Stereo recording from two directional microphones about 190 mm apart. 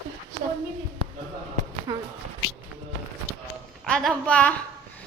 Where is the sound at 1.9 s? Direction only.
20° right (ahead or behind).